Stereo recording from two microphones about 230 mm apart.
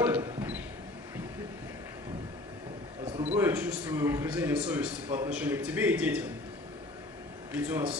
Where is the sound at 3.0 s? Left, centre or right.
Right.